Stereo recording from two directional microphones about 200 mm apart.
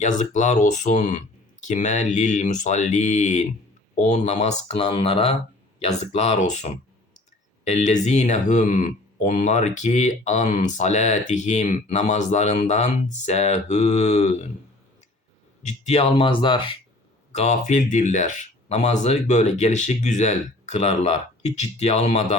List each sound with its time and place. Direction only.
0.0 s speech: 35° left (ahead or behind)
15.6 s speech: 30° left (ahead or behind)
17.3 s speech: 35° left (ahead or behind)